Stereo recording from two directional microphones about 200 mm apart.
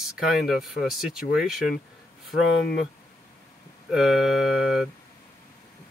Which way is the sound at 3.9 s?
Centre (ahead or behind).